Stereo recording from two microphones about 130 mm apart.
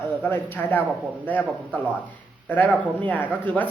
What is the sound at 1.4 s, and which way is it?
Speech, 10° right (ahead or behind).